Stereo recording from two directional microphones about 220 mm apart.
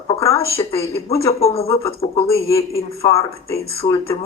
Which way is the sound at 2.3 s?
15° left (ahead or behind).